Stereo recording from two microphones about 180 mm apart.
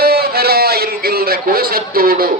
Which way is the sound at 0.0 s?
60° right (ahead or behind).